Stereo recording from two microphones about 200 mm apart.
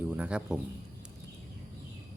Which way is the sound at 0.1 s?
5° right (ahead or behind).